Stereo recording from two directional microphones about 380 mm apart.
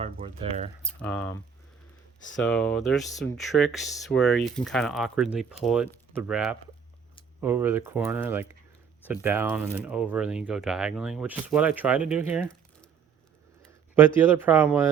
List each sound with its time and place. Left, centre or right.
0.0 s speech: centre
0.8 s speech: centre
2.4 s speech: centre
13.9 s speech: centre